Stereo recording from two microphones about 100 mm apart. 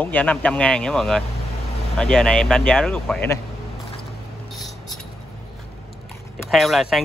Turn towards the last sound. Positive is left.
turn(degrees=0)  # may be behind; listen again after turning